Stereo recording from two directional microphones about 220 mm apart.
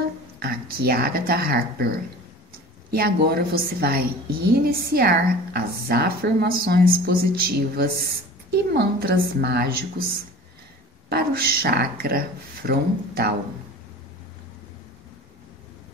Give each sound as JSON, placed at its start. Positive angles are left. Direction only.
{"t": 0.4, "sound": "speech", "side_deg": -45}
{"t": 2.9, "sound": "a woman's voice", "side_deg": -45}